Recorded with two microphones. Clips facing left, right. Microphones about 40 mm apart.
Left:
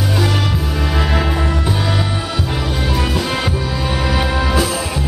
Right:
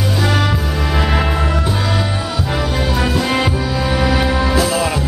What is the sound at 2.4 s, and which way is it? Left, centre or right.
Music, centre.